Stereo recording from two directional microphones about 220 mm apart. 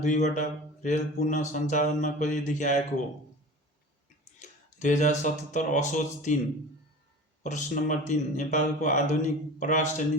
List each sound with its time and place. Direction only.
0.0 s speech: 35° left (ahead or behind)
4.4 s speech: 35° left (ahead or behind)
7.4 s speech: 35° left (ahead or behind)